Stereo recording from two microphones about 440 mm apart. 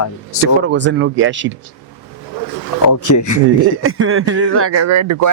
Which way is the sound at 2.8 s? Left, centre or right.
Left.